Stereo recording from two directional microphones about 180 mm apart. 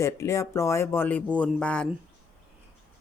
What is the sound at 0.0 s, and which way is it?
Speech, 15° left (ahead or behind).